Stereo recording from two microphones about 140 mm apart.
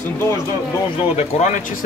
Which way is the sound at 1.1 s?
55° left (ahead or behind).